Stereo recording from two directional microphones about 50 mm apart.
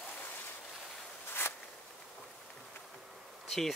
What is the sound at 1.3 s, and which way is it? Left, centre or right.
Zipper, left.